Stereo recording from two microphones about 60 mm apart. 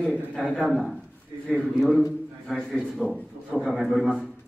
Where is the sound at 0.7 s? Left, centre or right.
Centre.